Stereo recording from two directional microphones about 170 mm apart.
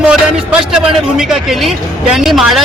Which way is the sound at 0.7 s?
Centre (ahead or behind).